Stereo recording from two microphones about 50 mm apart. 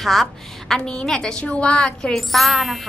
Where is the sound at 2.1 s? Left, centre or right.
Centre.